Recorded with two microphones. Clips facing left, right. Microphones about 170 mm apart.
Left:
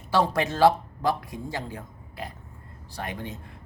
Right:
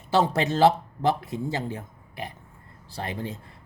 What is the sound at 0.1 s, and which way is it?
A man's voice, 25° right (ahead or behind).